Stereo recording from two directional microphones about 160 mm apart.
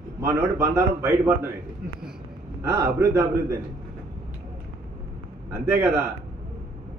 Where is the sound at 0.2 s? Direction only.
15° right (ahead or behind).